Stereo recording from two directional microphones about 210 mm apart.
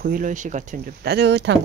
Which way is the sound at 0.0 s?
40° right (ahead or behind).